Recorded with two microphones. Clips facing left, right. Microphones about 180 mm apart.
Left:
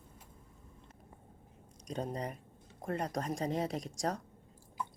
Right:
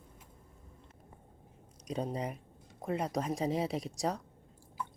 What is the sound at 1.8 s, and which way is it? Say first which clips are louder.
Speech: right 2 dB; 5° right (ahead or behind).